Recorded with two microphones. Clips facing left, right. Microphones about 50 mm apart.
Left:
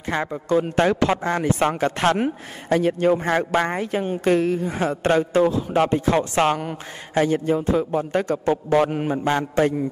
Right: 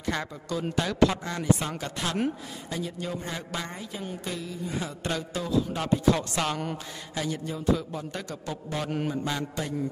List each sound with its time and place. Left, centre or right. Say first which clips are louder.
0.1 s a man's voice: left 10 dB; left